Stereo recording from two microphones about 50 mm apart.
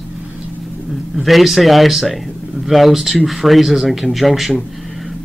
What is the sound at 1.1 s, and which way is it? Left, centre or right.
Speech, centre.